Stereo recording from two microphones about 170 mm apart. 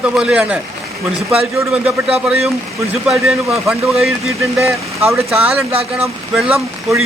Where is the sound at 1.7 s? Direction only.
10° right (ahead or behind).